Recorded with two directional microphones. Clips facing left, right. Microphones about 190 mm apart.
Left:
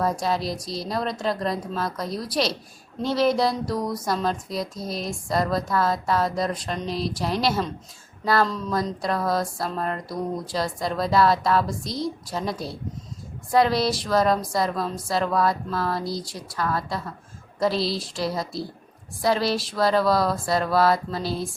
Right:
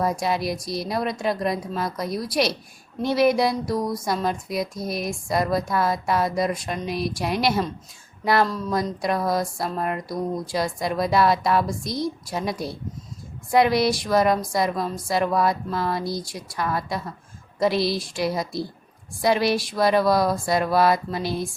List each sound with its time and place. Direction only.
0.0 s a woman's voice: 10° right (ahead or behind)